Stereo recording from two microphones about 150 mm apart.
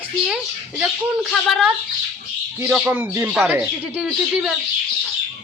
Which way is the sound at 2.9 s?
15° right (ahead or behind).